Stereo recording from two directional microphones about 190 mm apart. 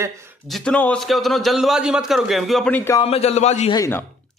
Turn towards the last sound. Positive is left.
turn(degrees=15)  # may be behind; listen again after turning